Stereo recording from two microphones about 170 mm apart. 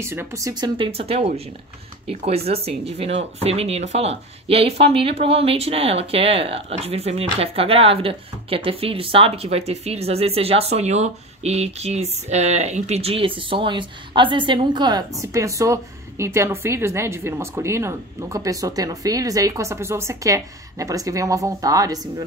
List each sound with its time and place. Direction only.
0.0 s speech: 15° right (ahead or behind)
0.7 s speech: 30° right (ahead or behind)